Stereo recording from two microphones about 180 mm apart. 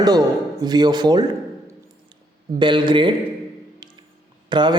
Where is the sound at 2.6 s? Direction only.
25° right (ahead or behind).